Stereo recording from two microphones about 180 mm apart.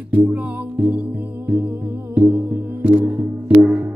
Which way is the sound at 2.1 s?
10° right (ahead or behind).